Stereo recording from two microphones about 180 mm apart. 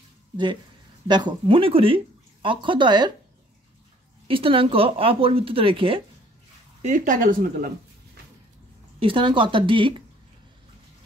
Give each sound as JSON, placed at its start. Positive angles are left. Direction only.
{"t": 1.0, "sound": "speech", "side_deg": -25}
{"t": 4.3, "sound": "speech", "side_deg": -30}
{"t": 6.8, "sound": "speech", "side_deg": -45}
{"t": 9.0, "sound": "speech", "side_deg": -25}